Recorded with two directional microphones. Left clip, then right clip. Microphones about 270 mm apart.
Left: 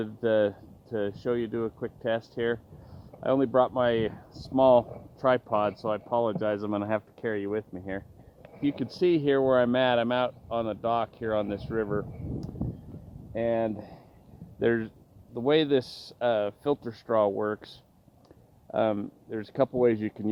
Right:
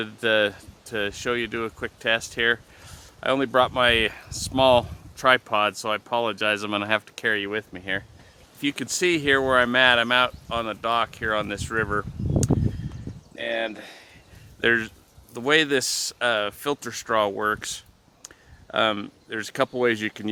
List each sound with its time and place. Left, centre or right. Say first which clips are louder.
0.0 s speech: right 3 dB; centre
4.3 s speech: right 13 dB; centre
4.5 s speech: right 2 dB; centre
18.7 s speech: right 4 dB; centre